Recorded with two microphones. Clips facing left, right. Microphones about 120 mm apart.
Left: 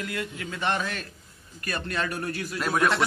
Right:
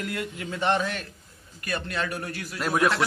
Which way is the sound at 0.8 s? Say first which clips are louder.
Right 2 dB; 15° right (ahead or behind).